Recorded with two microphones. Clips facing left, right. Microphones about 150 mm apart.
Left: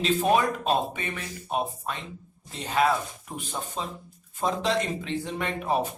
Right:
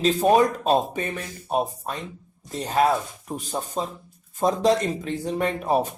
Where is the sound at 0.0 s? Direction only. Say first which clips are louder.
Right 5 dB; 40° right (ahead or behind).